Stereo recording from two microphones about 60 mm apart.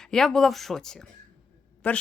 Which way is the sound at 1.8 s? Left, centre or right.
Left.